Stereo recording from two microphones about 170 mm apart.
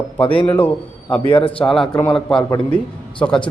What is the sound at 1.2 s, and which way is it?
Speech, 35° left (ahead or behind).